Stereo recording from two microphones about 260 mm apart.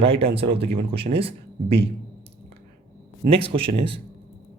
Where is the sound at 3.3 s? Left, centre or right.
Right.